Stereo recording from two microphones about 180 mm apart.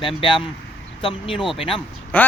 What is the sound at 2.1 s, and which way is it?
Speech, 10° left (ahead or behind).